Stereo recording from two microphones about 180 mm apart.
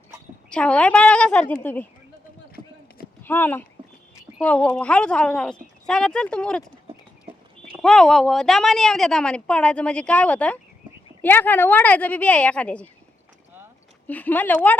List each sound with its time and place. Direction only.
0.5 s a woman's voice: 5° left (ahead or behind)
2.6 s clip-clop: 20° right (ahead or behind)
3.2 s a woman's voice: 10° left (ahead or behind)
7.8 s a woman's voice: 5° left (ahead or behind)
14.1 s speech: 10° left (ahead or behind)